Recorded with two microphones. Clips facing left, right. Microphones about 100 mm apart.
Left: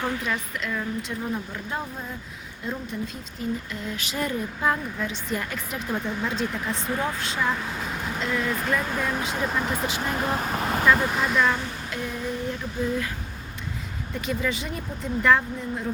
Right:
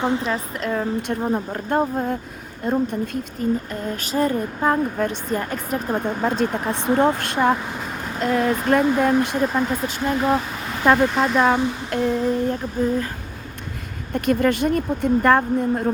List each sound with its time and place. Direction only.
0.0 s a sound: 25° right (ahead or behind)
1.2 s speech: 45° right (ahead or behind)
8.2 s speech: 45° right (ahead or behind)
8.7 s speech: 55° right (ahead or behind)
10.4 s vehicle: 45° left (ahead or behind)
11.3 s a sound: 40° right (ahead or behind)
14.1 s speech: 55° right (ahead or behind)